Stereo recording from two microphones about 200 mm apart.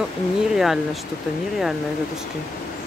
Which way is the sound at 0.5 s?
Centre (ahead or behind).